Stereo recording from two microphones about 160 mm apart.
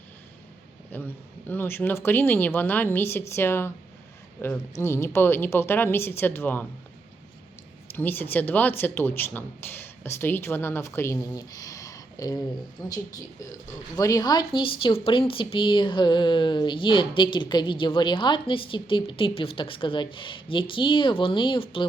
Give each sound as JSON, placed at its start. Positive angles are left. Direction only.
{"t": 0.9, "sound": "speech", "side_deg": 10}
{"t": 7.9, "sound": "speech", "side_deg": 10}